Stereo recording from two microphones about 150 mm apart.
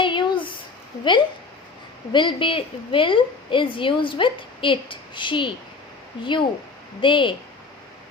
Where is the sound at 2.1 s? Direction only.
30° left (ahead or behind).